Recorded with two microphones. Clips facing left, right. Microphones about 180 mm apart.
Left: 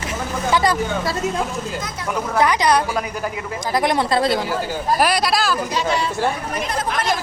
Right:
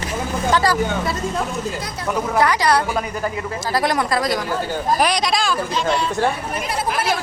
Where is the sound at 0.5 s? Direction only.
20° left (ahead or behind).